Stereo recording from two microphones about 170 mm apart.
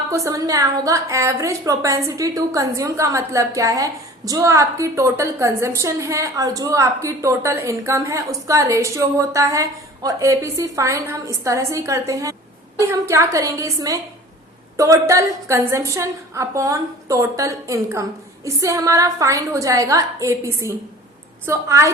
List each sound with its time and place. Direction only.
0.1 s a woman's voice: 15° right (ahead or behind)